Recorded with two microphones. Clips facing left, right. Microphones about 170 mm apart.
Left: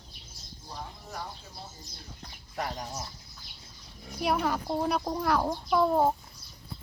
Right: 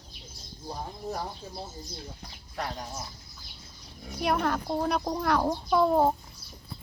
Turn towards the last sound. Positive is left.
turn(degrees=0)  # may be behind; listen again after turning